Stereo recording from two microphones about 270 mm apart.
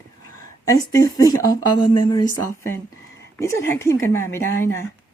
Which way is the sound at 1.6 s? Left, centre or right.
Left.